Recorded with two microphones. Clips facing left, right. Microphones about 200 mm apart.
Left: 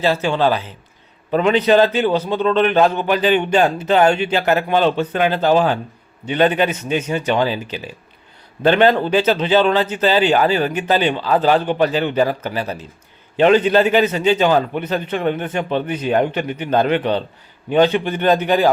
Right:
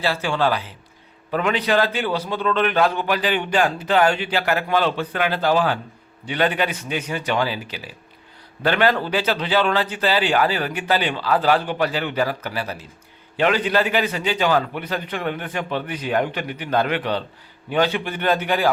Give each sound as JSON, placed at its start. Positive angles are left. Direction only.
{"t": 0.0, "sound": "a man's voice", "side_deg": 20}